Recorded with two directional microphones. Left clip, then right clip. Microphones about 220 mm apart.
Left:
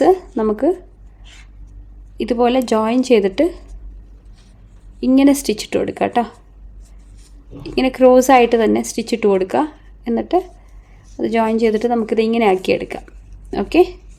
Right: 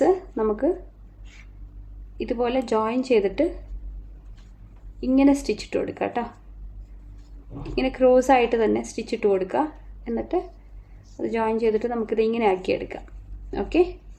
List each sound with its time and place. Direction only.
0.0 s a sound: 45° left (ahead or behind)
2.1 s a woman's voice: 45° left (ahead or behind)
4.9 s a woman's voice: 45° left (ahead or behind)
7.6 s a woman's voice: 45° left (ahead or behind)